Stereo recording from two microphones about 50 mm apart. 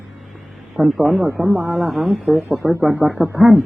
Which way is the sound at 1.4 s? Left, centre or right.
Right.